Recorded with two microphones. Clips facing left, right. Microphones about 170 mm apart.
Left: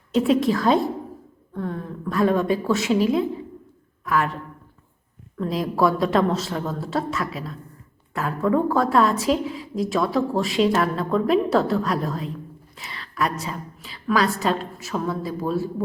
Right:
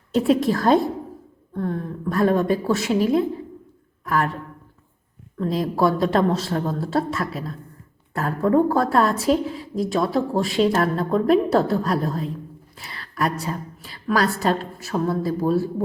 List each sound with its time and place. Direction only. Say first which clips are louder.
0.3 s a woman's voice: right 2 dB; 40° right (ahead or behind)
5.7 s speech: even; 35° right (ahead or behind)
12.9 s a sound: right 1 dB; 45° right (ahead or behind)
13.4 s a woman's voice: right 3 dB; 45° right (ahead or behind)